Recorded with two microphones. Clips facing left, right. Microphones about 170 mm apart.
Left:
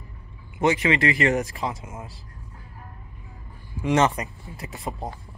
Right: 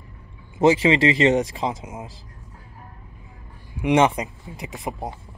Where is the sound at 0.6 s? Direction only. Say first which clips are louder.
Right 5 dB; 30° right (ahead or behind).